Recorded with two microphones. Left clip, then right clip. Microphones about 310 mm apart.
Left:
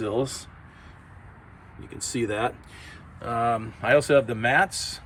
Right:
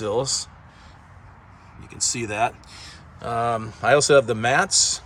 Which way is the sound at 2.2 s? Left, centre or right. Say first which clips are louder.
Right 1 dB; centre.